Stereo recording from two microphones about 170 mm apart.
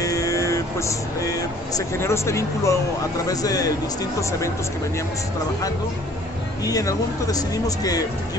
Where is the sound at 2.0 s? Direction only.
15° left (ahead or behind).